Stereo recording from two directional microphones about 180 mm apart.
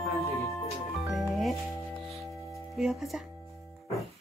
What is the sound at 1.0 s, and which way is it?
Speech, centre (ahead or behind).